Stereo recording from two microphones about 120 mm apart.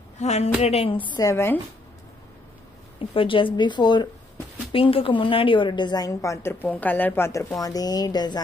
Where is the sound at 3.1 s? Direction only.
45° left (ahead or behind).